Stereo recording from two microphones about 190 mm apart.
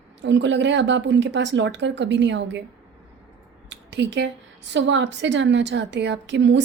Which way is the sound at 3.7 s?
70° right (ahead or behind).